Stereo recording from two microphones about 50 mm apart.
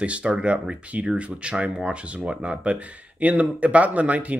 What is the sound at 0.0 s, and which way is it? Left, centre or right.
Speech, right.